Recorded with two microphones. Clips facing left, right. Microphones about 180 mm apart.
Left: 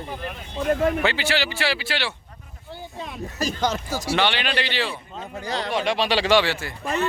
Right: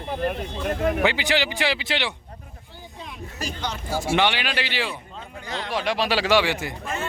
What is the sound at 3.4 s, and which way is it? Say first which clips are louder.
Speech: left 7 dB; 40° left (ahead or behind).